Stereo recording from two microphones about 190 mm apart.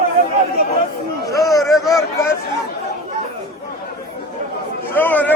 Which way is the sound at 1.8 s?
20° left (ahead or behind).